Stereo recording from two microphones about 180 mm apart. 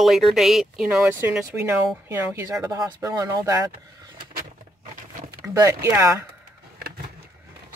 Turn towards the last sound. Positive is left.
turn(degrees=-15)  # may be behind; listen again after turning